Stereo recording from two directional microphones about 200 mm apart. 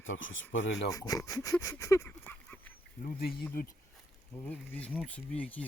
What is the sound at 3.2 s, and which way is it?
Speech, 50° left (ahead or behind).